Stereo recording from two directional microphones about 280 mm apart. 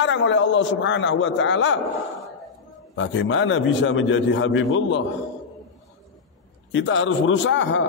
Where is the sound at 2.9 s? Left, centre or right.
Left.